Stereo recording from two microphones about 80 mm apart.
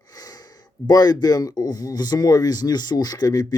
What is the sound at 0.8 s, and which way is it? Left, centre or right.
Speech, left.